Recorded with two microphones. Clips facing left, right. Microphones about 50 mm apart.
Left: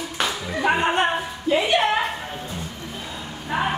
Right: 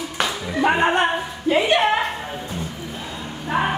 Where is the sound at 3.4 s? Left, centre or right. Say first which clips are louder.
Right 2 dB; centre.